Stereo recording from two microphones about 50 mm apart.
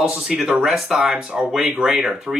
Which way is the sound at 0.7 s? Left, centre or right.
Centre.